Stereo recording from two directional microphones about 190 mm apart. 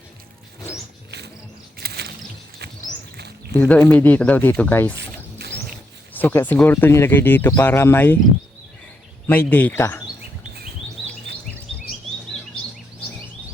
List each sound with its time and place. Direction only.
1.8 s a sound: 55° right (ahead or behind)
3.5 s speech: 10° left (ahead or behind)
4.9 s rodents: 60° right (ahead or behind)
6.1 s speech: 10° left (ahead or behind)
9.2 s speech: 10° left (ahead or behind)